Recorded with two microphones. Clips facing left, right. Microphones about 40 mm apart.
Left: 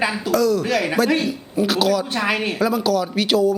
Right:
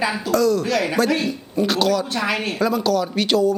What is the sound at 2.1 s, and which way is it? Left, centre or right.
Speech, centre.